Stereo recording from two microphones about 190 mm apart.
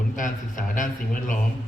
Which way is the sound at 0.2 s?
45° left (ahead or behind).